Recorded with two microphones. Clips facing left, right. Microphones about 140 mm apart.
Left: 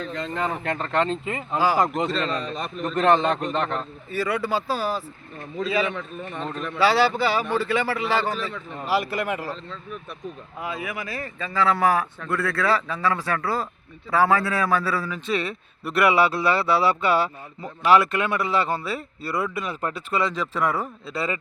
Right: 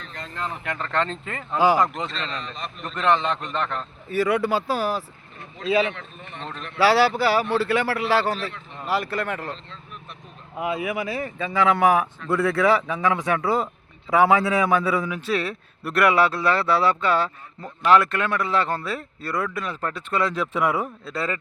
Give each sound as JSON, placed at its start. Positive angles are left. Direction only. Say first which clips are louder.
{"t": 0.6, "sound": "speech", "louder": "left 3 dB", "side_deg": 30}
{"t": 0.9, "sound": "speech", "louder": "left 2 dB", "side_deg": 10}
{"t": 1.5, "sound": "speech", "louder": "right 3 dB", "side_deg": -15}
{"t": 1.8, "sound": "a man's voice", "louder": "left 2 dB", "side_deg": 35}
{"t": 4.1, "sound": "speech", "louder": "right 3 dB", "side_deg": -15}
{"t": 6.4, "sound": "speech", "louder": "left 4 dB", "side_deg": 45}
{"t": 6.7, "sound": "speech", "louder": "right 2 dB", "side_deg": -10}
{"t": 8.9, "sound": "speech", "louder": "left 1 dB", "side_deg": 10}
{"t": 10.6, "sound": "a man's voice", "louder": "right 6 dB", "side_deg": -15}
{"t": 15.3, "sound": "speech", "louder": "left 1 dB", "side_deg": 0}
{"t": 21.1, "sound": "speech", "louder": "left 1 dB", "side_deg": 5}